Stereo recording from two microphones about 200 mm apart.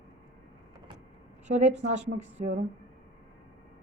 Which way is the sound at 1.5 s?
35° right (ahead or behind).